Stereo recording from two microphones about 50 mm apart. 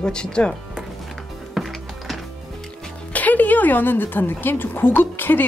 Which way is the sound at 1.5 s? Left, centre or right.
Centre.